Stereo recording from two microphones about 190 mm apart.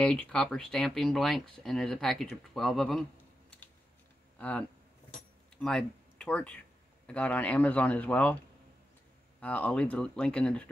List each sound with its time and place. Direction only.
0.0 s speech: 5° left (ahead or behind)
4.4 s a man's voice: 10° left (ahead or behind)
9.4 s a man's voice: 10° left (ahead or behind)